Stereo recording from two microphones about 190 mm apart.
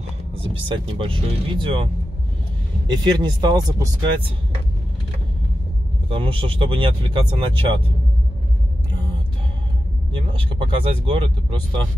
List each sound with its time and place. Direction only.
0.4 s speech: 30° right (ahead or behind)
2.9 s speech: 20° right (ahead or behind)
6.0 s speech: 25° right (ahead or behind)
10.1 s speech: 25° right (ahead or behind)